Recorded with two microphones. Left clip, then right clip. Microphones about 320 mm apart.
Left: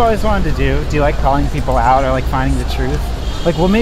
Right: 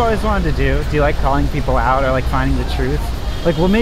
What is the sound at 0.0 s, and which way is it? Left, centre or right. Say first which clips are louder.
Speech: left 3 dB; centre.